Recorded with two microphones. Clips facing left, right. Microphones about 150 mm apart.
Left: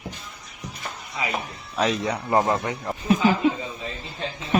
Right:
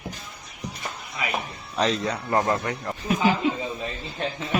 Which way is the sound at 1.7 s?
10° left (ahead or behind).